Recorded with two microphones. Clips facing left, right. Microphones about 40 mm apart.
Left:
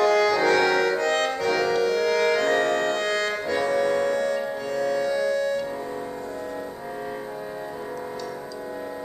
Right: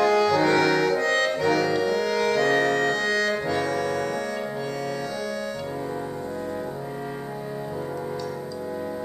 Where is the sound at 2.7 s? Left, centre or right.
Centre.